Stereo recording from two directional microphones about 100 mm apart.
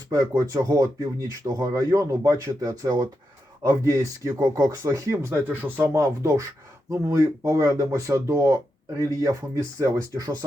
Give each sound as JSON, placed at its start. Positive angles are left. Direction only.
{"t": 0.1, "sound": "speech", "side_deg": -35}